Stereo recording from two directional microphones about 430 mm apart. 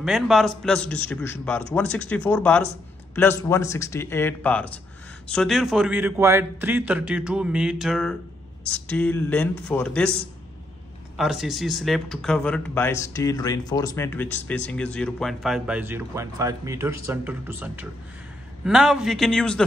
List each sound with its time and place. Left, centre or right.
0.0 s speech: centre
11.1 s speech: centre